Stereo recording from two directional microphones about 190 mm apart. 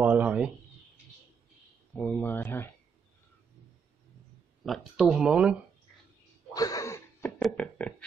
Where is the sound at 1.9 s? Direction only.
10° left (ahead or behind).